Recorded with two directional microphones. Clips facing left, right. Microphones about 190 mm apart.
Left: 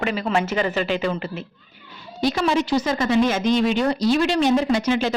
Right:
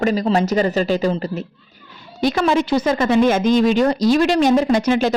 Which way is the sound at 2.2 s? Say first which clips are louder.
Right 3 dB; 55° right (ahead or behind).